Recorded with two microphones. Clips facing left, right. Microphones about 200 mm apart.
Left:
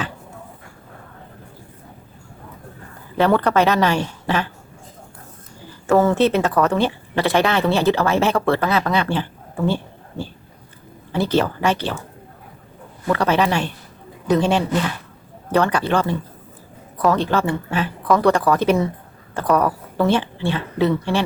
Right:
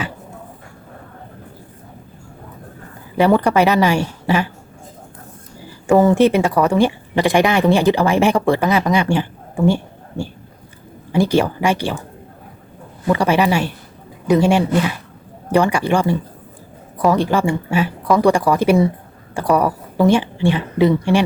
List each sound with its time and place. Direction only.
3.2 s speech: 10° right (ahead or behind)
5.9 s speech: 15° right (ahead or behind)
13.1 s a woman's voice: 10° right (ahead or behind)